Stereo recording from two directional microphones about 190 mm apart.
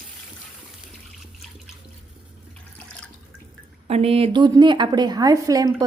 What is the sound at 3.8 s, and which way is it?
A woman's voice, 35° right (ahead or behind).